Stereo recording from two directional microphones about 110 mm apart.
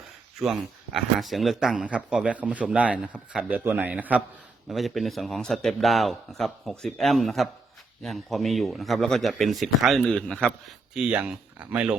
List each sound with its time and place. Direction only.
0.9 s a man's voice: centre (ahead or behind)
4.7 s a man's voice: centre (ahead or behind)
10.9 s a man's voice: 10° right (ahead or behind)